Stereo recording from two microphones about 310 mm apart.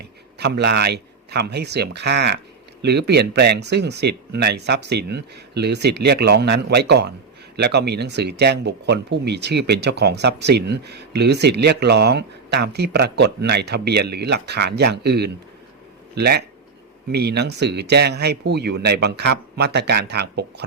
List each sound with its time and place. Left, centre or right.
0.0 s a man's voice: right